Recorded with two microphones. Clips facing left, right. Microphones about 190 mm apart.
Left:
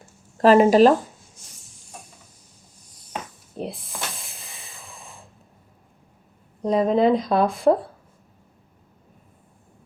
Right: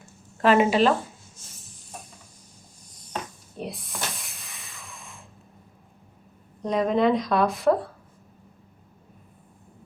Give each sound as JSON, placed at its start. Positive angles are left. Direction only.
{"t": 0.3, "sound": "a woman's voice", "side_deg": 35}
{"t": 3.6, "sound": "speech", "side_deg": 25}
{"t": 4.2, "sound": "hiss", "side_deg": 30}
{"t": 6.6, "sound": "speech", "side_deg": 30}